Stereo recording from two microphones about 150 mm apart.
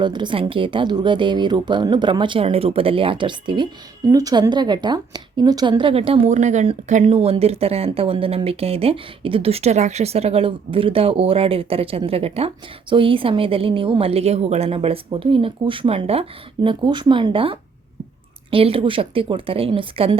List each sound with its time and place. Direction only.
0.0 s speech: 30° right (ahead or behind)